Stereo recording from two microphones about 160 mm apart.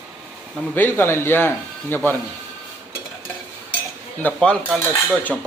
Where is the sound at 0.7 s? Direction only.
15° left (ahead or behind).